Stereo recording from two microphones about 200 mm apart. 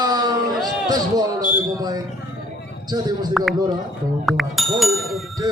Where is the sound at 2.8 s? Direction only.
20° right (ahead or behind).